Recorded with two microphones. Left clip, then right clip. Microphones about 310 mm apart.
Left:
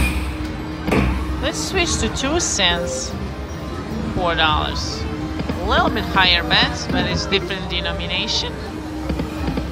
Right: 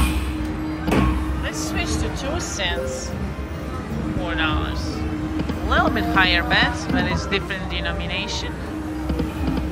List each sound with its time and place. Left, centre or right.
1.4 s speech: centre
4.3 s speech: centre
5.7 s speech: centre